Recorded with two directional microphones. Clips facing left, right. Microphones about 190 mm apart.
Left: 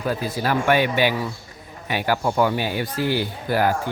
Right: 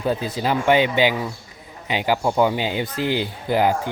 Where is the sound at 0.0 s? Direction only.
20° right (ahead or behind).